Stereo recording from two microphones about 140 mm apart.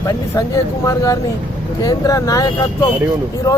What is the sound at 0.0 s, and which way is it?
Speech, 25° left (ahead or behind).